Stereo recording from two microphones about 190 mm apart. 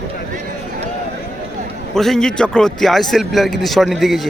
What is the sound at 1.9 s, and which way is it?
A man's voice, centre (ahead or behind).